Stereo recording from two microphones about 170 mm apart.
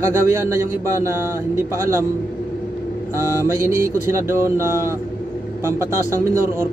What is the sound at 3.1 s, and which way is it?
Speech, 15° right (ahead or behind).